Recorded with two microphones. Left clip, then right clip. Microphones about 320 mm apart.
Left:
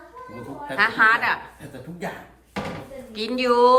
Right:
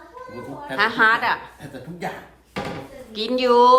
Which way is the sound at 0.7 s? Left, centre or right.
Centre.